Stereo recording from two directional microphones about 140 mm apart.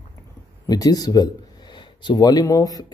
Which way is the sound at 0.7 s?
25° left (ahead or behind).